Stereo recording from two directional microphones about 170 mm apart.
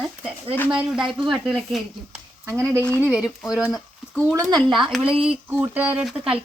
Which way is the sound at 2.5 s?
15° right (ahead or behind).